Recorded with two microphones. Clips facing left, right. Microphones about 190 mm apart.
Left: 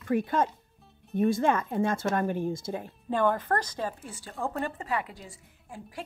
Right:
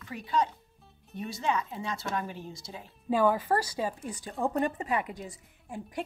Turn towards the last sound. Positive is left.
turn(degrees=-20)  # may be behind; listen again after turning